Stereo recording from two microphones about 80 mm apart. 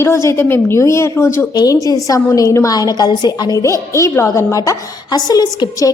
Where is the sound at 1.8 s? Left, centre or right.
Left.